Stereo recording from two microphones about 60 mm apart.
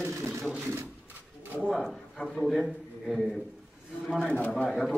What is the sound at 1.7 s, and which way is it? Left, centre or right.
A man's voice, centre.